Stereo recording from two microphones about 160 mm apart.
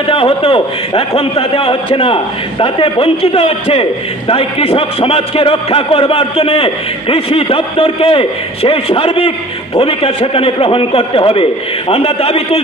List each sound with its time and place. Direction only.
0.1 s a man's voice: 35° left (ahead or behind)